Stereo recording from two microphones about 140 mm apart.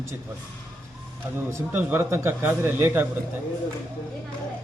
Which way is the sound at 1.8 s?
15° right (ahead or behind).